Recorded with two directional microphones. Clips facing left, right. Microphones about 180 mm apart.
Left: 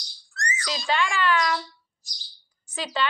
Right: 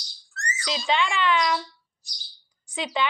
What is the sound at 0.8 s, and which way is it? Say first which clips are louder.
Speech: even; 20° right (ahead or behind).